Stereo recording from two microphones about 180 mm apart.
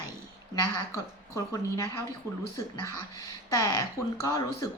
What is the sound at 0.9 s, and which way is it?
A woman's voice, 15° left (ahead or behind).